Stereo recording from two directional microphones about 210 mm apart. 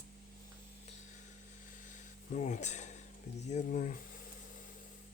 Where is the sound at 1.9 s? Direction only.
35° left (ahead or behind).